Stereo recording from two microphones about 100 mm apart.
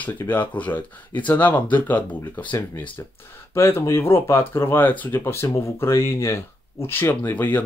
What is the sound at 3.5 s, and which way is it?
Speech, 30° left (ahead or behind).